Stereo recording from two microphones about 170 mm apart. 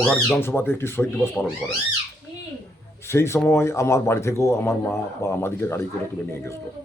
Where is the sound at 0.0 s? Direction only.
5° left (ahead or behind).